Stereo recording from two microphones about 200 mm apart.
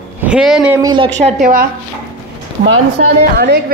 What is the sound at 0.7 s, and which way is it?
Speech, 20° right (ahead or behind).